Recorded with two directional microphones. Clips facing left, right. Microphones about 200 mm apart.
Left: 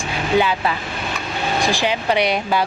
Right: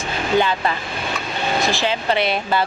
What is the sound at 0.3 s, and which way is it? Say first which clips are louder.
Speech: left 1 dB; 10° left (ahead or behind).